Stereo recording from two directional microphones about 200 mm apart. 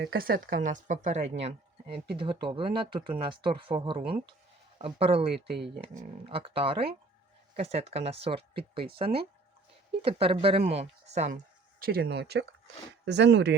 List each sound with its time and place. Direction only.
0.0 s speech: 50° right (ahead or behind)
11.8 s speech: 50° right (ahead or behind)